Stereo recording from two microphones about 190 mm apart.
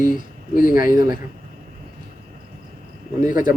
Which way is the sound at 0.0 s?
45° left (ahead or behind).